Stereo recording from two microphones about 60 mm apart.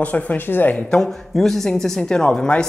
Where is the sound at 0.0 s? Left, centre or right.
Left.